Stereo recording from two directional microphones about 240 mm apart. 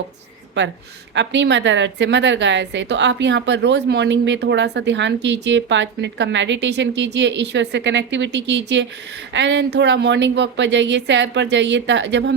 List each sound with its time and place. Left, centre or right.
0.6 s a woman's voice: right